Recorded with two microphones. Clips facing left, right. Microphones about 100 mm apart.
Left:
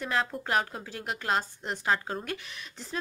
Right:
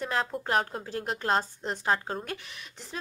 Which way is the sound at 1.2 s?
35° right (ahead or behind).